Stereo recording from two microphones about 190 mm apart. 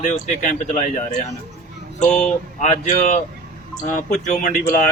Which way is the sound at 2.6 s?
40° left (ahead or behind).